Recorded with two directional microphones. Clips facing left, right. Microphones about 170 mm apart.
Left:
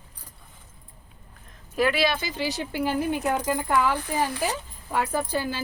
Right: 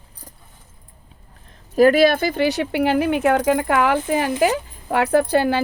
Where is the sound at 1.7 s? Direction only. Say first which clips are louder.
Right 10 dB; 45° right (ahead or behind); by 4.3 s 85° right.